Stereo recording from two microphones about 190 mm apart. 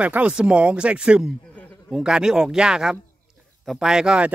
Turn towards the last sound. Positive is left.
turn(degrees=-5)  # may be behind; listen again after turning